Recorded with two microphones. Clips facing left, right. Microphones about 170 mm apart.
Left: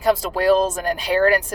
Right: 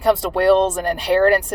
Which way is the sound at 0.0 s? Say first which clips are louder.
Right 2 dB; 70° right (ahead or behind).